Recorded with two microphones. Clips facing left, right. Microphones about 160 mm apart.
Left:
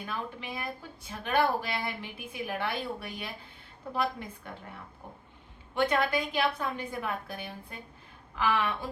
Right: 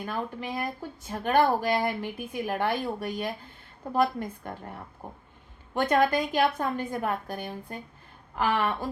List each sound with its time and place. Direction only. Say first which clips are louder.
0.0 s speech: right 5 dB; 45° right (ahead or behind)